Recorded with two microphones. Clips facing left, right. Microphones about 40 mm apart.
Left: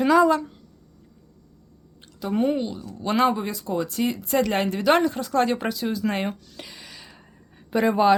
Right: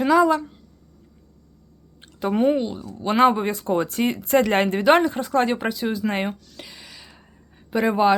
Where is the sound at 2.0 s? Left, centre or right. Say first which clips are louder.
Right 3 dB; right.